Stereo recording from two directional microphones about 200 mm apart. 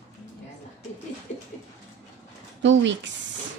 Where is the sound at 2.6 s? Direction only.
65° right (ahead or behind).